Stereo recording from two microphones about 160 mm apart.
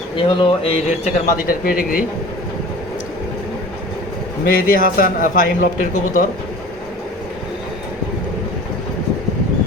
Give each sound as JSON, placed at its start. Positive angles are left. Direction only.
{"t": 0.2, "sound": "speech", "side_deg": 30}
{"t": 1.5, "sound": "a man's voice", "side_deg": 65}
{"t": 4.4, "sound": "a man's voice", "side_deg": 65}